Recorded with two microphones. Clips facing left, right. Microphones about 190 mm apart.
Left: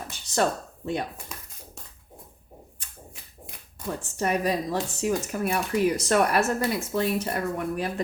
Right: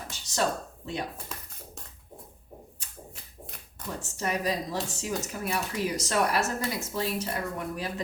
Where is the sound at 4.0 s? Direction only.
55° left (ahead or behind).